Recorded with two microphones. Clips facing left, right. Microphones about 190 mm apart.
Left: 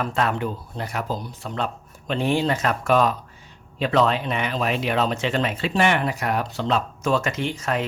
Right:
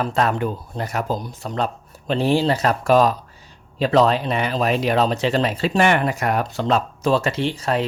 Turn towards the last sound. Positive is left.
turn(degrees=-30)  # may be behind; listen again after turning